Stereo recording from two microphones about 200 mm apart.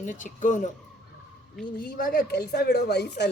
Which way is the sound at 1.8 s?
45° left (ahead or behind).